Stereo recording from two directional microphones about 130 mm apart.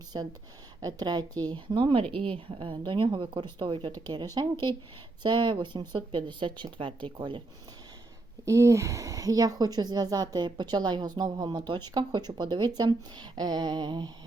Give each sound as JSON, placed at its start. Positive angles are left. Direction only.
{"t": 0.1, "sound": "a woman's voice", "side_deg": -35}
{"t": 8.4, "sound": "a woman's voice", "side_deg": -25}